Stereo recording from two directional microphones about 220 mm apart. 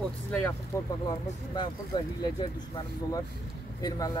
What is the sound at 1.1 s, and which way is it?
Speech, 20° left (ahead or behind).